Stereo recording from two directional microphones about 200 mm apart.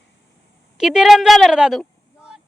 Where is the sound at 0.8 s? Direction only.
5° right (ahead or behind).